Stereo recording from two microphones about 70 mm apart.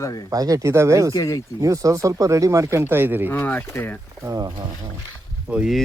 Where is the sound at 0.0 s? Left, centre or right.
Left.